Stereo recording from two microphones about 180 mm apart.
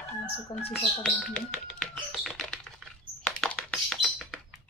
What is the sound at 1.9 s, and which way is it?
Typing, centre (ahead or behind).